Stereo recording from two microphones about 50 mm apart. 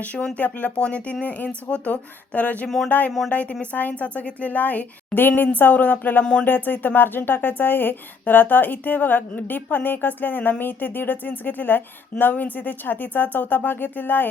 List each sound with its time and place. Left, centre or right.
0.0 s speech: left
2.6 s speech: centre
3.2 s speech: left